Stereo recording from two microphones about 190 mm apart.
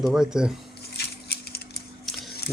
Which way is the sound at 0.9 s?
55° left (ahead or behind).